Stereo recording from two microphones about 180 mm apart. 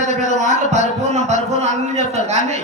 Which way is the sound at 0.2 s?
40° right (ahead or behind).